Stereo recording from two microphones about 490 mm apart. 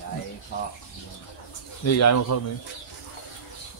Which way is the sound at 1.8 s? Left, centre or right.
Left.